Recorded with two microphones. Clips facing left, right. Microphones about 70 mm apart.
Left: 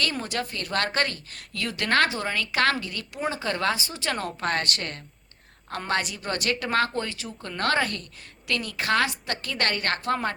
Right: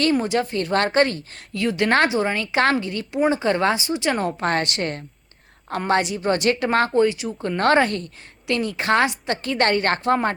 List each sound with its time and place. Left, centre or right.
0.0 s speech: right
7.4 s speech: right